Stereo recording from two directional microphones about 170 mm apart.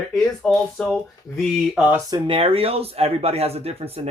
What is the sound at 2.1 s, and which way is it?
Speech, 30° right (ahead or behind).